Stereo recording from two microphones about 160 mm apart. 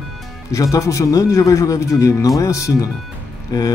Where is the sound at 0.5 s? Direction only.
20° left (ahead or behind).